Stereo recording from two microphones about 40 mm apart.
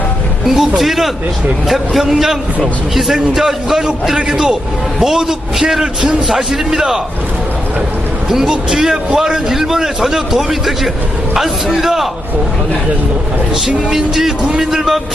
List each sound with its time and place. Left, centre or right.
0.4 s a man's voice: centre
6.2 s a man's voice: centre
8.3 s a man's voice: centre
13.7 s a man's voice: centre